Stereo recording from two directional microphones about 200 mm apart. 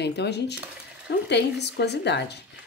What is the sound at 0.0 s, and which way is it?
A woman's voice, 55° left (ahead or behind).